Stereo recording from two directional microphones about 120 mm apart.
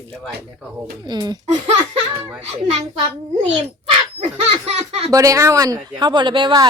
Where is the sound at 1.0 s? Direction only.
35° right (ahead or behind).